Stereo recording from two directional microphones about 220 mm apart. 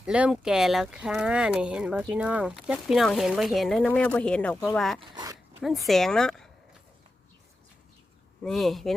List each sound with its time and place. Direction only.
0.0 s speech: 5° right (ahead or behind)
4.9 s speech: 20° right (ahead or behind)
5.6 s speech: centre (ahead or behind)
8.4 s speech: centre (ahead or behind)